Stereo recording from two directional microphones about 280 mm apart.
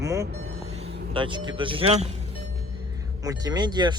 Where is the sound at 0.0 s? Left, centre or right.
Centre.